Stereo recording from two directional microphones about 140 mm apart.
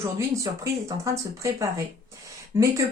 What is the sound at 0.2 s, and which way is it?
Speech, 20° right (ahead or behind).